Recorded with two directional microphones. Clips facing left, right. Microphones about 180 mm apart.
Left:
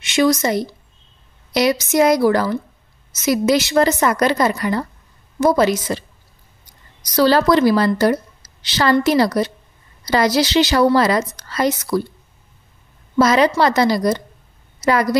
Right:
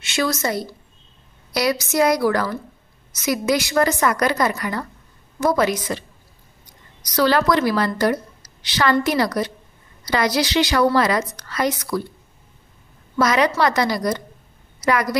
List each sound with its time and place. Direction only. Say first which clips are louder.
0.0 s a woman's voice: left 6 dB; 20° left (ahead or behind)
7.2 s a woman's voice: left 4 dB; 30° left (ahead or behind)
13.2 s a woman's voice: left 4 dB; 30° left (ahead or behind)